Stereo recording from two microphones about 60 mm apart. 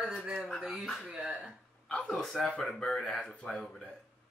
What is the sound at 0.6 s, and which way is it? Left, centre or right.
Speech, centre.